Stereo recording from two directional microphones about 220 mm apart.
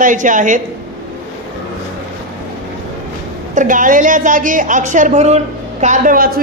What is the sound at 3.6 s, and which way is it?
Speech, 35° right (ahead or behind).